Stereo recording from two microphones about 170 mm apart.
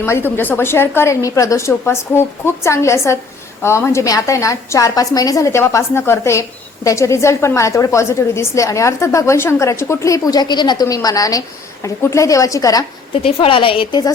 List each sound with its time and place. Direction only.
0.0 s a woman's voice: 15° left (ahead or behind)
13.2 s a woman's voice: 30° left (ahead or behind)